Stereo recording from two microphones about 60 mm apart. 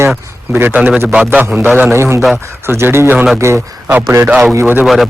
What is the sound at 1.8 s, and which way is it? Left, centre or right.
Speech, right.